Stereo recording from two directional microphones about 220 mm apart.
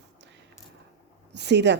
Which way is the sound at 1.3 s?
50° right (ahead or behind).